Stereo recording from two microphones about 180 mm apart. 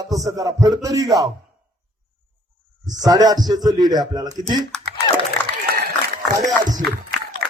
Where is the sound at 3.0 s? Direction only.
20° right (ahead or behind).